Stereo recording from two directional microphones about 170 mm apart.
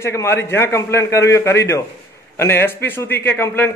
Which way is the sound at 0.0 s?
15° left (ahead or behind).